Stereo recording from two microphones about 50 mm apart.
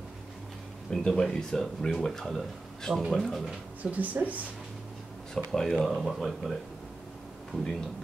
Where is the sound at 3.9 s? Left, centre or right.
Right.